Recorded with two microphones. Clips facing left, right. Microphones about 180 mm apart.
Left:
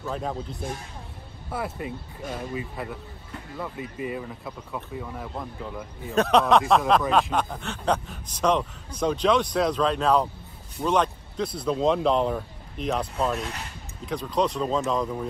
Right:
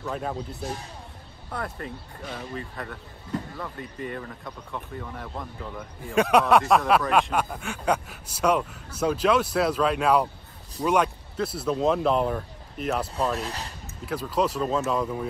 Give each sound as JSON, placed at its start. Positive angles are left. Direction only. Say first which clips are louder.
{"t": 0.0, "sound": "speech", "louder": "even", "side_deg": 0}
{"t": 1.5, "sound": "speech", "louder": "left 2 dB", "side_deg": 5}
{"t": 6.1, "sound": "speech", "louder": "even", "side_deg": -10}
{"t": 6.6, "sound": "speech", "louder": "even", "side_deg": 0}
{"t": 13.4, "sound": "speech", "louder": "right 1 dB", "side_deg": -35}
{"t": 14.0, "sound": "speech", "louder": "even", "side_deg": -5}